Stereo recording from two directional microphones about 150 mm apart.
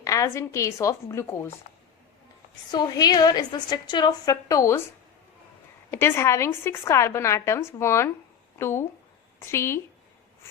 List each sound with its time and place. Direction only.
0.0 s a woman's voice: 20° left (ahead or behind)
2.7 s a woman's voice: 25° left (ahead or behind)
5.9 s a woman's voice: 15° left (ahead or behind)